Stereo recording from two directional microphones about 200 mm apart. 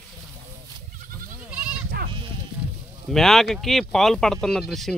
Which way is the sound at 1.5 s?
5° right (ahead or behind).